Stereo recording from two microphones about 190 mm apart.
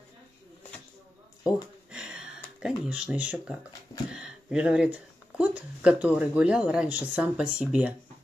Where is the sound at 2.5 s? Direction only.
5° right (ahead or behind).